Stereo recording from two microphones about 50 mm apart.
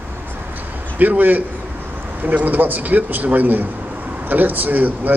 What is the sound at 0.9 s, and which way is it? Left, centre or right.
Speech, right.